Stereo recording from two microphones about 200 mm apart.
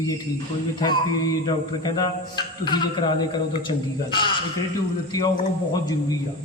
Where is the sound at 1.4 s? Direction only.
20° left (ahead or behind).